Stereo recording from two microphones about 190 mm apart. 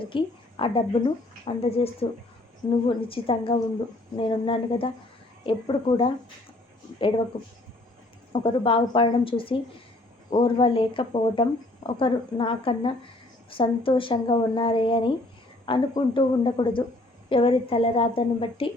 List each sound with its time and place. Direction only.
0.0 s a woman's voice: 25° left (ahead or behind)
7.3 s speech: 20° left (ahead or behind)